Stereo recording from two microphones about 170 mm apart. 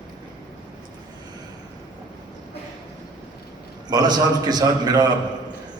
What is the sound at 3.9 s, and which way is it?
A man's voice, 25° right (ahead or behind).